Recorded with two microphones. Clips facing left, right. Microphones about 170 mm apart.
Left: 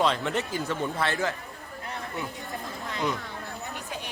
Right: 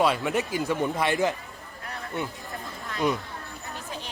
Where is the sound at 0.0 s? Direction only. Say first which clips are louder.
Right 2 dB; 10° right (ahead or behind).